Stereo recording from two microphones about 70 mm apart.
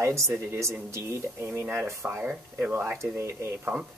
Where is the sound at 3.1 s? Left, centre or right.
Right.